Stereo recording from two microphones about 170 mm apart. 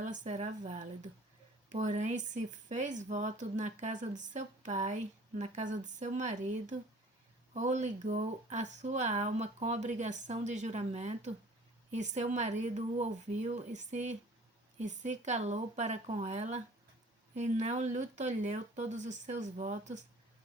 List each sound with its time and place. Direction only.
0.0 s speech: 45° right (ahead or behind)